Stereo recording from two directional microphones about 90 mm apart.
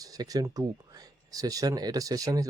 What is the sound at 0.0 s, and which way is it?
Speech, 40° right (ahead or behind).